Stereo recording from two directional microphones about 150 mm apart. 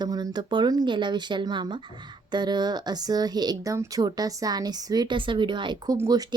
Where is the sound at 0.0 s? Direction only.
25° right (ahead or behind).